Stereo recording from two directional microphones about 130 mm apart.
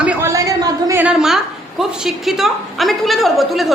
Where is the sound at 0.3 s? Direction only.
25° right (ahead or behind).